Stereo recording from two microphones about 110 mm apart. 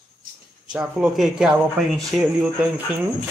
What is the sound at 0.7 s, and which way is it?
Speech, 5° right (ahead or behind).